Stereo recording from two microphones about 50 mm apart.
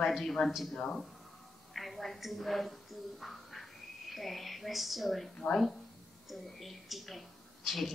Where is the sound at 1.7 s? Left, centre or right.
Centre.